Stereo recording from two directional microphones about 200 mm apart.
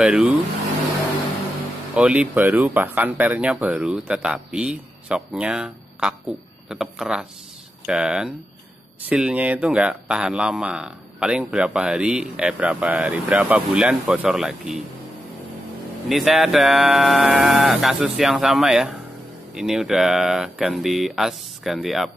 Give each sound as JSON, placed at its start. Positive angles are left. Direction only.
{"t": 0.0, "sound": "speech", "side_deg": -5}
{"t": 2.0, "sound": "speech", "side_deg": -5}
{"t": 16.1, "sound": "speech", "side_deg": 0}